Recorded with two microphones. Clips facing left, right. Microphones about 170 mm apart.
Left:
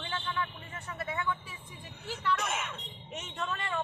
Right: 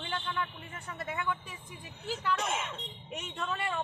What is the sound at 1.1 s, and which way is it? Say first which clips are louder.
Speech: even; 15° right (ahead or behind).